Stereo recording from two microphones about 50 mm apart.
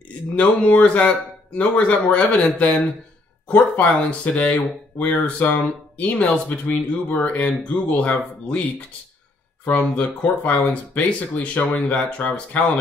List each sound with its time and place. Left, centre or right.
0.4 s speech: left
9.7 s speech: left